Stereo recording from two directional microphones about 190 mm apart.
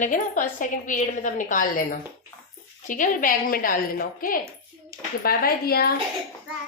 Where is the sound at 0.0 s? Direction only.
40° left (ahead or behind).